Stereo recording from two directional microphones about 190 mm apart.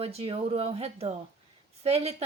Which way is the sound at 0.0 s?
30° right (ahead or behind).